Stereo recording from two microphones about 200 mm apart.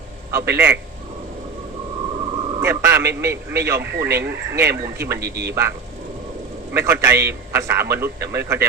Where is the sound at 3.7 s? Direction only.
55° right (ahead or behind).